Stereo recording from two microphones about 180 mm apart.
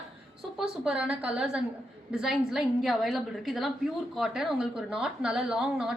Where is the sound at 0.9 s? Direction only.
5° right (ahead or behind).